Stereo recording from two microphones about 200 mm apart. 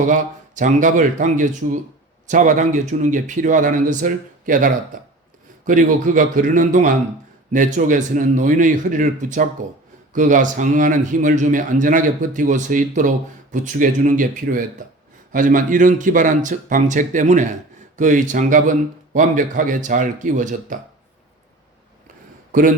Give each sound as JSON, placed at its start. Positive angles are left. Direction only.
{"t": 0.0, "sound": "speech", "side_deg": -40}
{"t": 22.5, "sound": "a man's voice", "side_deg": -40}